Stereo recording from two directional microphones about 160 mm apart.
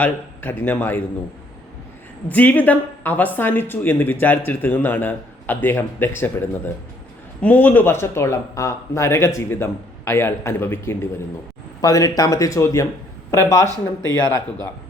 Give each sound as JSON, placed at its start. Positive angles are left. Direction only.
{"t": 0.0, "sound": "speech", "side_deg": 10}
{"t": 2.3, "sound": "speech", "side_deg": 10}
{"t": 7.4, "sound": "speech", "side_deg": 10}